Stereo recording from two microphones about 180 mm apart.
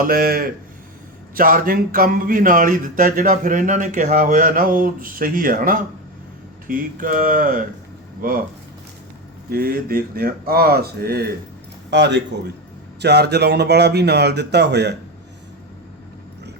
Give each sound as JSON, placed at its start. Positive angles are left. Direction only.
{"t": 0.0, "sound": "speech", "side_deg": -55}
{"t": 9.5, "sound": "speech", "side_deg": -55}
{"t": 11.9, "sound": "speech", "side_deg": -70}